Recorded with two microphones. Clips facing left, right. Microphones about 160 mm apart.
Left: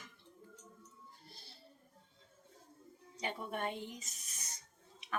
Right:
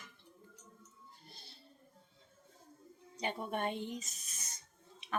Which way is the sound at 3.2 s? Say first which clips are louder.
Right 3 dB; 25° right (ahead or behind).